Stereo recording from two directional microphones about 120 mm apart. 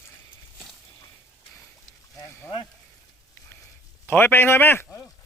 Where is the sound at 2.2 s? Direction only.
20° left (ahead or behind).